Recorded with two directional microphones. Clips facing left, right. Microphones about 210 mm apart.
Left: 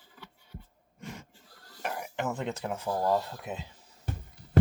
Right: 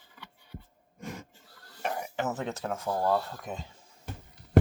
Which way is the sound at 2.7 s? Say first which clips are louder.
Even; 15° left (ahead or behind).